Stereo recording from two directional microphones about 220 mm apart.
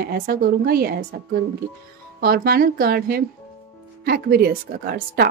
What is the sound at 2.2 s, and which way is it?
A woman's voice, 45° right (ahead or behind).